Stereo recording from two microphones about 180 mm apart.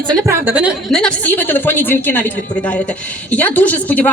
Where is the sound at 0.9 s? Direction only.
5° left (ahead or behind).